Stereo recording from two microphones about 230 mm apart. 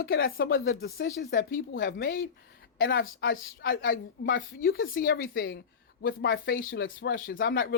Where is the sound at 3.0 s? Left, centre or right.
Left.